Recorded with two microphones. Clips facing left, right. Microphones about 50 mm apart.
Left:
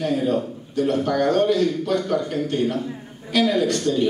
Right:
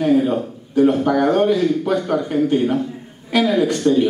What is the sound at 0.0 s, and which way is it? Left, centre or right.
A man's voice, centre.